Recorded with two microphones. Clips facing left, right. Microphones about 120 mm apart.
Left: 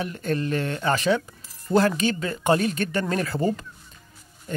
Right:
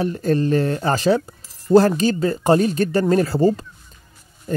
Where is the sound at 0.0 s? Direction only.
35° right (ahead or behind).